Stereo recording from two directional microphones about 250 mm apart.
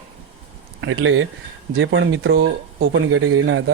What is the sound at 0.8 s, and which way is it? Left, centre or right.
Speech, right.